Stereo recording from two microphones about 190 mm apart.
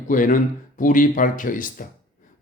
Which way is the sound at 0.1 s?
45° left (ahead or behind).